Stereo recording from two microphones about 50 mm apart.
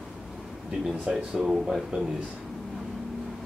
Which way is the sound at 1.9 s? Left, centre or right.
Right.